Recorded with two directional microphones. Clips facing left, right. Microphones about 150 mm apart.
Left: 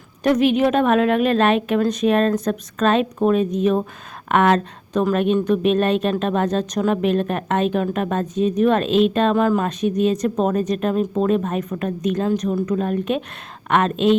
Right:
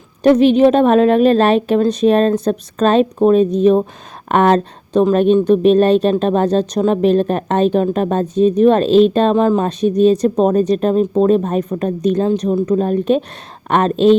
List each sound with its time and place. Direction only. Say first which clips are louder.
0.2 s speech: right 7 dB; 30° right (ahead or behind)